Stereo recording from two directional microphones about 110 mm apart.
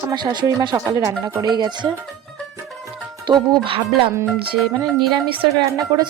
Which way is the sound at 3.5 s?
50° right (ahead or behind).